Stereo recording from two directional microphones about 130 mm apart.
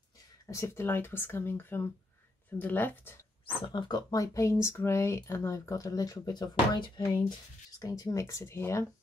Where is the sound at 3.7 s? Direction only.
35° left (ahead or behind).